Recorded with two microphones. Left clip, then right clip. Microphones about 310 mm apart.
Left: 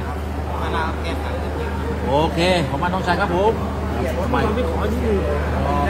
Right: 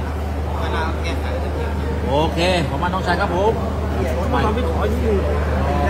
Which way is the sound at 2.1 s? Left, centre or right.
Centre.